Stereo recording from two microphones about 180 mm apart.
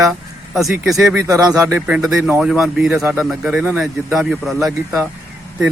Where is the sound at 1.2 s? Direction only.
20° right (ahead or behind).